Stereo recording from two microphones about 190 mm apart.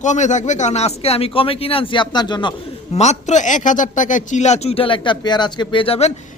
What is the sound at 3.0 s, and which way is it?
A man's voice, 35° left (ahead or behind).